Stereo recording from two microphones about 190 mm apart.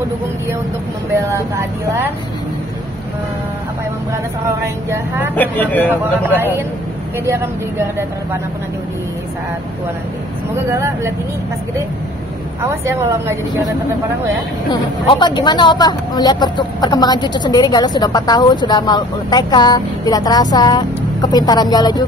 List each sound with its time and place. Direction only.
1.3 s speech: 15° right (ahead or behind)
4.5 s speech: 15° right (ahead or behind)
5.3 s speech: 10° left (ahead or behind)
6.2 s speech: 10° right (ahead or behind)
10.7 s speech: 15° right (ahead or behind)
12.6 s speech: 15° right (ahead or behind)
14.7 s speech: 25° left (ahead or behind)